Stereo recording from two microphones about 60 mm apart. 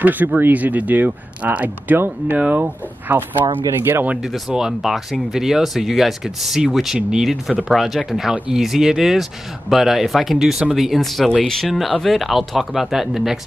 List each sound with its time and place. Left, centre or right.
0.0 s speech: right
2.0 s speech: right
4.2 s speech: centre